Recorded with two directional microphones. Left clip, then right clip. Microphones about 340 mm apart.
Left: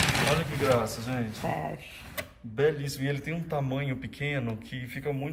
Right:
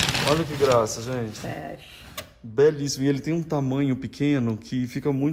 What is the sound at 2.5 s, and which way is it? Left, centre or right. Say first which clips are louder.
Speech: right 7 dB; centre.